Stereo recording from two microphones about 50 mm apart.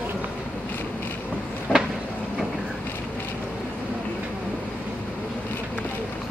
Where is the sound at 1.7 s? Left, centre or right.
Centre.